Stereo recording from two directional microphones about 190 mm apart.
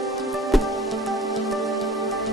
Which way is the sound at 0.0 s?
Centre (ahead or behind).